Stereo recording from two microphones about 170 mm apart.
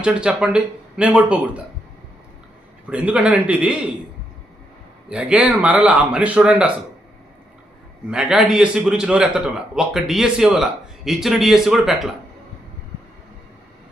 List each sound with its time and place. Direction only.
0.0 s a man's voice: 5° right (ahead or behind)
2.8 s speech: 10° right (ahead or behind)
5.0 s speech: 5° right (ahead or behind)
8.1 s a man's voice: 5° right (ahead or behind)